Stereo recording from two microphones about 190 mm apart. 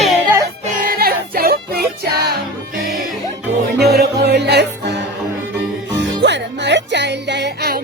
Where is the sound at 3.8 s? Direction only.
60° right (ahead or behind).